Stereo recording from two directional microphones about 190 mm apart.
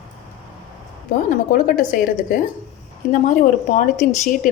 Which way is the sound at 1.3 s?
45° left (ahead or behind).